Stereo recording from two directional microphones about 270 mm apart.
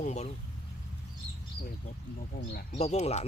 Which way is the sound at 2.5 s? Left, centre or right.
Left.